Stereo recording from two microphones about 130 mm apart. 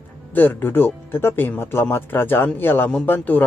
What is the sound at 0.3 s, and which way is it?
Speech, 15° left (ahead or behind).